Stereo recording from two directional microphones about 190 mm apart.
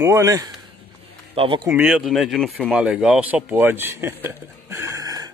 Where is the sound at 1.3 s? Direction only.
30° right (ahead or behind).